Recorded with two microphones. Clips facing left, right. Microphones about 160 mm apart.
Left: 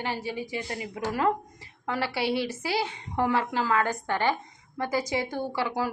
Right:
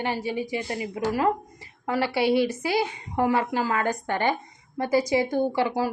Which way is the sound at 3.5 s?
45° right (ahead or behind).